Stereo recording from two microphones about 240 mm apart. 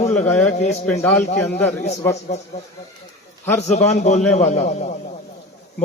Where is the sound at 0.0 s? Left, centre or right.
Left.